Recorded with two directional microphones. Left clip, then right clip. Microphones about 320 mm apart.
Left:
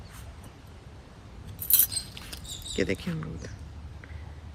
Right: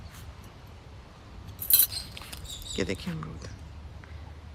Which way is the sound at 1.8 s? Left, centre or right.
Centre.